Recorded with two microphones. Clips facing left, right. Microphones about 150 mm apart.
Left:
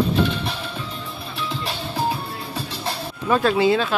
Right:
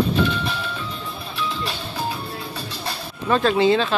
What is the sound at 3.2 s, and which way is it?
Speech, 5° left (ahead or behind).